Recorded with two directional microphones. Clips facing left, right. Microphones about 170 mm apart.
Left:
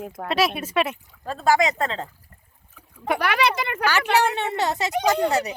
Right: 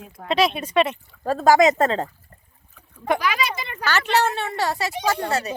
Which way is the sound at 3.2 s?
65° left (ahead or behind).